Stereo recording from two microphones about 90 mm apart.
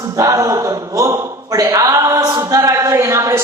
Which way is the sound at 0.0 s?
40° right (ahead or behind).